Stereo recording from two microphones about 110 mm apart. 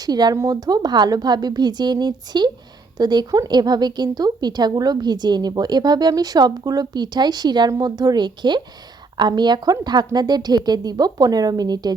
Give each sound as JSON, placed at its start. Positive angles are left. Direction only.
{"t": 0.0, "sound": "speech", "side_deg": -40}